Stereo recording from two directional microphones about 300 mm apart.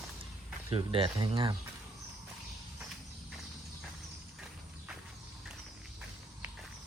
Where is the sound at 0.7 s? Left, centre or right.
Centre.